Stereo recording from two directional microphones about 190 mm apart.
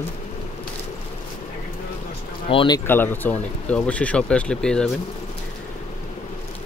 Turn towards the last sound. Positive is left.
turn(degrees=5)  # may be behind; listen again after turning